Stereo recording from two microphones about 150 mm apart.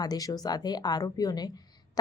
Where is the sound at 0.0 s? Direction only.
25° left (ahead or behind).